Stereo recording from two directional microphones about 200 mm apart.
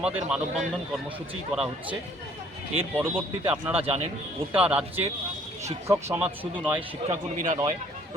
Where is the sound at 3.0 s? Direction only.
10° right (ahead or behind).